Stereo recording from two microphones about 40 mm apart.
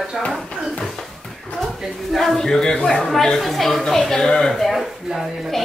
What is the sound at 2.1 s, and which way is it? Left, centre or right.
Speech, centre.